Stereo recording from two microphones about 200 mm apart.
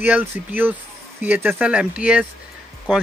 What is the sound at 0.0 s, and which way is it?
Speech, 10° right (ahead or behind).